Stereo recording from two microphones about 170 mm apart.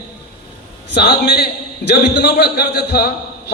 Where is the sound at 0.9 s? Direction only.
70° left (ahead or behind).